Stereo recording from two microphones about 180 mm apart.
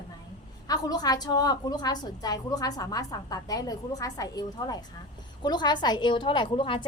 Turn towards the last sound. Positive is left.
turn(degrees=25)  # may be behind; listen again after turning